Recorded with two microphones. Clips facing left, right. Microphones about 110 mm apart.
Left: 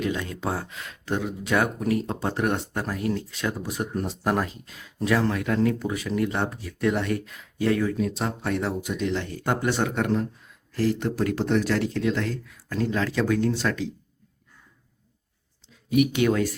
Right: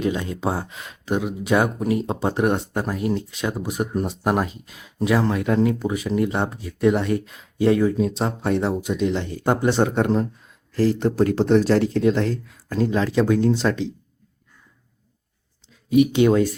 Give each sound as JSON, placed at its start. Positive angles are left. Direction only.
{"t": 0.0, "sound": "speech", "side_deg": -25}
{"t": 15.9, "sound": "speech", "side_deg": -25}